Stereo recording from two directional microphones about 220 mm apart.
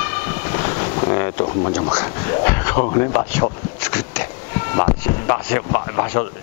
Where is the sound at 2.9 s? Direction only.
20° left (ahead or behind).